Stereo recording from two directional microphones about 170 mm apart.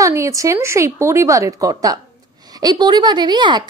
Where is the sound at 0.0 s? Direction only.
20° right (ahead or behind).